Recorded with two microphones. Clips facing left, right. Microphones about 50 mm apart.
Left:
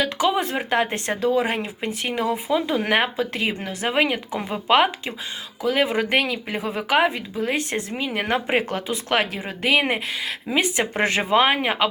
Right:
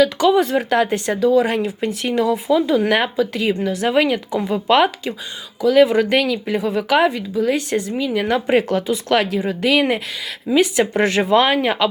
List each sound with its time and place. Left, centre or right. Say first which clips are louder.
0.0 s speech: right 7 dB; centre
0.8 s a woman's voice: right 5 dB; left
8.4 s a woman's voice: right 6 dB; centre